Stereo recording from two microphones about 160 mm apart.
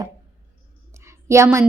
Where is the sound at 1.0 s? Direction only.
15° right (ahead or behind).